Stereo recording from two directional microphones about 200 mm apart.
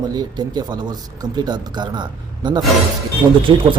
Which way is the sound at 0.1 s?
20° right (ahead or behind).